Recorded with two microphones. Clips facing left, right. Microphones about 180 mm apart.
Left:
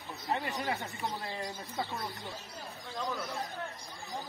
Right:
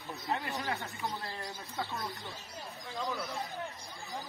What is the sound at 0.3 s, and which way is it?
Speech, 15° left (ahead or behind).